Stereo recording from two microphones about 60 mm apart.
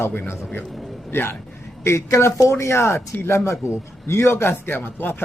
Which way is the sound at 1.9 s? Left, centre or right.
Left.